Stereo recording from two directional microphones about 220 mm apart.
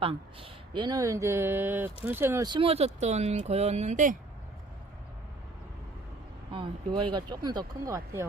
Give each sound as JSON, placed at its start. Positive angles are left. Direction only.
{"t": 0.0, "sound": "speech", "side_deg": -25}
{"t": 6.5, "sound": "speech", "side_deg": -20}